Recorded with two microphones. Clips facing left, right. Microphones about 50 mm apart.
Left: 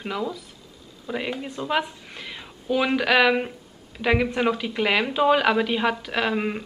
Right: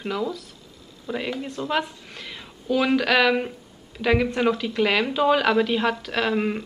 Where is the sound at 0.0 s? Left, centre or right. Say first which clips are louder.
Right 1 dB; centre.